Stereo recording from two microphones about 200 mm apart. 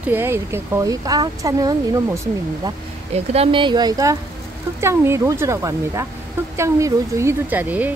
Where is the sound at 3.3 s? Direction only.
25° right (ahead or behind).